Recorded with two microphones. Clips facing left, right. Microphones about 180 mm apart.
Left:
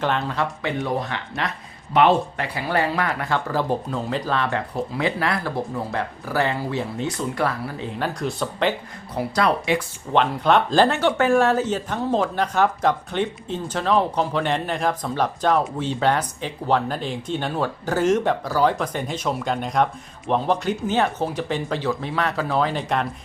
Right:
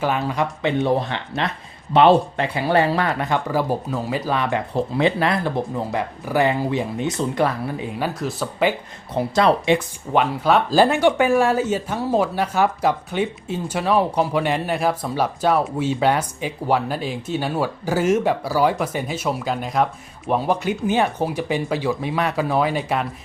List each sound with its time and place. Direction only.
0.0 s speech: 10° right (ahead or behind)
0.6 s speech: 25° right (ahead or behind)
7.9 s speech: 5° right (ahead or behind)
9.1 s speech: 25° right (ahead or behind)
10.1 s speech: 5° right (ahead or behind)